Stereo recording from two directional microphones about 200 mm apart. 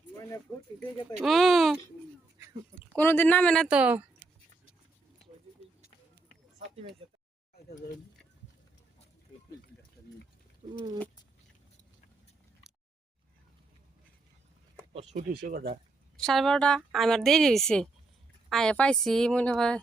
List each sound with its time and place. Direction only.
1.2 s a woman's voice: centre (ahead or behind)
2.9 s speech: 10° left (ahead or behind); by 4.0 s 5° right (ahead or behind)
7.0 s speech: 30° right (ahead or behind)
10.6 s speech: 25° right (ahead or behind)
15.1 s speech: 50° right (ahead or behind)
16.1 s a woman's voice: centre (ahead or behind)